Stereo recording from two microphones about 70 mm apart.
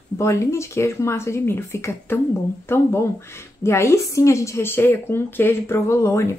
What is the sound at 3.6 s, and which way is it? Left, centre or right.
Speech, left.